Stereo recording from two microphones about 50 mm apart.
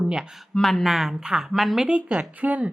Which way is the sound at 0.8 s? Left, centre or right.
Centre.